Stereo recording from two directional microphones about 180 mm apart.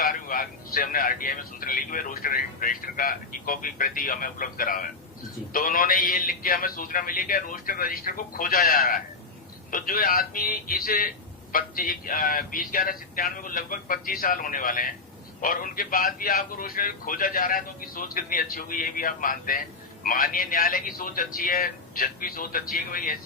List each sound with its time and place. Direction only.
0.0 s a man's voice: 50° left (ahead or behind)